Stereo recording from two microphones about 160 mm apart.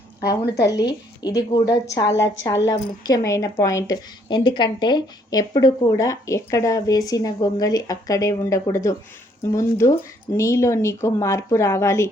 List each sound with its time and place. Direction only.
0.4 s speech: 90° left
1.2 s speech: 25° left (ahead or behind)